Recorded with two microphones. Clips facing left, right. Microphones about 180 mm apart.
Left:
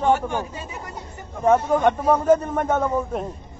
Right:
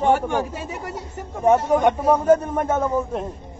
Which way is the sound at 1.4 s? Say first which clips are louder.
Right 1 dB; 15° right (ahead or behind).